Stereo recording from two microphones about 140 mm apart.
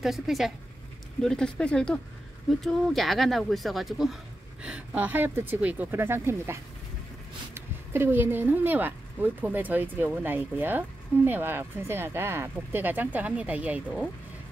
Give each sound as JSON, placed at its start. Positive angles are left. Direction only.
{"t": 0.0, "sound": "speech", "side_deg": 0}